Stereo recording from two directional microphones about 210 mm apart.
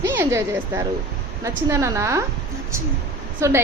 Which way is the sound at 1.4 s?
15° right (ahead or behind).